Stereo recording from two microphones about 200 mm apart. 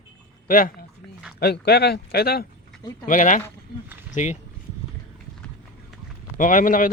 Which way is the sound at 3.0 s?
40° left (ahead or behind).